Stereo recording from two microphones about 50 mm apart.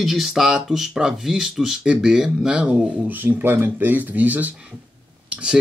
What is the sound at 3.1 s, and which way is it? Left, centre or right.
Speech, right.